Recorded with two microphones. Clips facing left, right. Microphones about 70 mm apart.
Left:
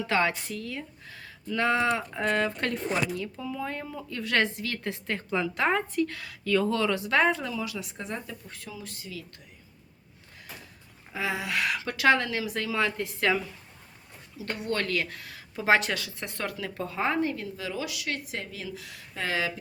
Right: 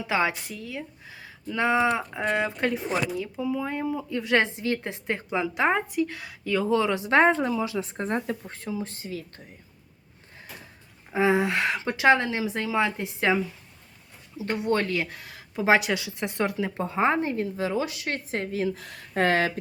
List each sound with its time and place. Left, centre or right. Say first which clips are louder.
0.1 s speech: right 2 dB; centre; by 8.5 s right
8.5 s speech: right 9 dB; right
11.1 s speech: right 8 dB; right